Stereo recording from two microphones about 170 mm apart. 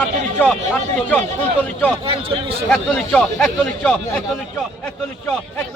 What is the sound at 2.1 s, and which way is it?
Speech, 35° right (ahead or behind).